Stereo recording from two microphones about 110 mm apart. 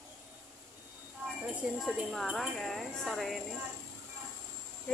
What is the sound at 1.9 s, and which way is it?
A woman's voice, centre (ahead or behind).